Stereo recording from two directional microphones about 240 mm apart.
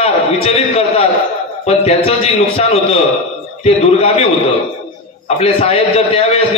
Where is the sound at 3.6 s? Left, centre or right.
Left.